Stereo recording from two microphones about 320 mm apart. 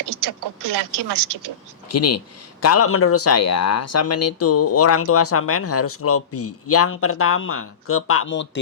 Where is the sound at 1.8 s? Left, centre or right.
Left.